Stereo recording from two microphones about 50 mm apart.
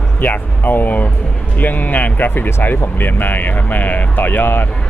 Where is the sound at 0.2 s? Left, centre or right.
Left.